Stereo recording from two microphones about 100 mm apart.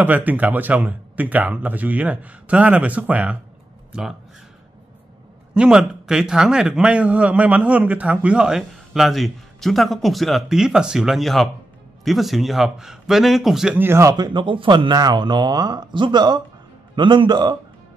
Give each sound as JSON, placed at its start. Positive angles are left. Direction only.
{"t": 0.0, "sound": "speech", "side_deg": -15}
{"t": 5.5, "sound": "a man's voice", "side_deg": -5}
{"t": 13.7, "sound": "speech", "side_deg": -25}
{"t": 14.1, "sound": "speech", "side_deg": -45}